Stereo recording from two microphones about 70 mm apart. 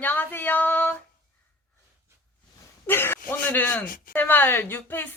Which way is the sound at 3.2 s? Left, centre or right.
Left.